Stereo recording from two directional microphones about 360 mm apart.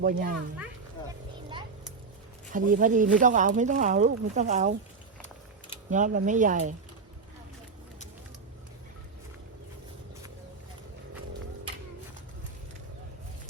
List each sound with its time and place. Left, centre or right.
0.0 s speech: right
2.5 s speech: right
5.9 s speech: right